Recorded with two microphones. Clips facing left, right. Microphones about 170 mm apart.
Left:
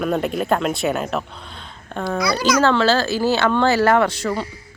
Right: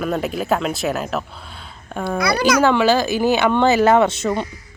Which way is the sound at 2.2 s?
60° right (ahead or behind).